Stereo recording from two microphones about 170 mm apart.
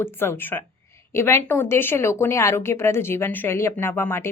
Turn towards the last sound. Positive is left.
turn(degrees=15)  # may be behind; listen again after turning